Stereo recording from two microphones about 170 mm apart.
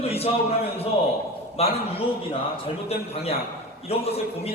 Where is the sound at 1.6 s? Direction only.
35° left (ahead or behind).